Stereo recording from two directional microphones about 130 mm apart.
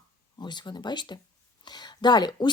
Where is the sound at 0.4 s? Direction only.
35° left (ahead or behind).